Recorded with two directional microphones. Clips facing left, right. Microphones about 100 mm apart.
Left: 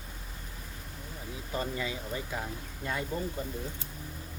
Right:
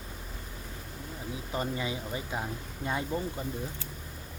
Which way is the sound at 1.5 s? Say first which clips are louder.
Right 1 dB; 20° right (ahead or behind).